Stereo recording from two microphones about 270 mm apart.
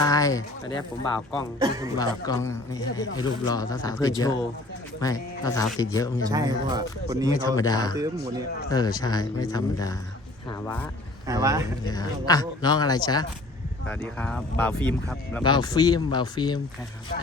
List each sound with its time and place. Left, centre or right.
0.0 s speech: centre
1.5 s speech: centre
2.0 s speech: centre
6.2 s speech: centre
7.4 s speech: centre
8.0 s speech: centre
8.7 s speech: centre
11.3 s speech: centre
11.9 s speech: centre
13.8 s speech: centre
15.4 s speech: centre